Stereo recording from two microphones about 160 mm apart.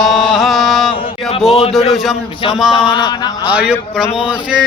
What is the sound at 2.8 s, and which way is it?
Mantra, 30° left (ahead or behind).